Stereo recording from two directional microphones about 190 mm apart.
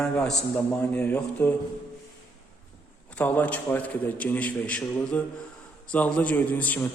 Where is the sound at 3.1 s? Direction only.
10° left (ahead or behind).